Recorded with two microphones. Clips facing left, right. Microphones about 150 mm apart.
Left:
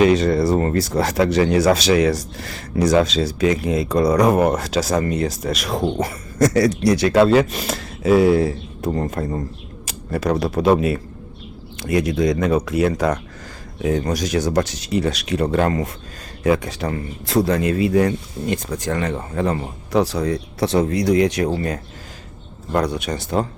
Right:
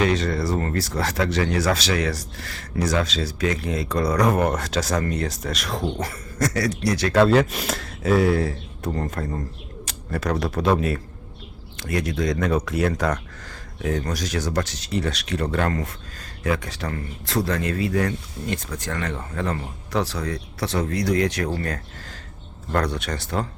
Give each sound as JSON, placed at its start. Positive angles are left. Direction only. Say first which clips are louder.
{"t": 0.0, "sound": "speech", "louder": "left 7 dB", "side_deg": 15}
{"t": 7.3, "sound": "speech", "louder": "left 3 dB", "side_deg": 0}
{"t": 8.1, "sound": "speech", "louder": "left 5 dB", "side_deg": 10}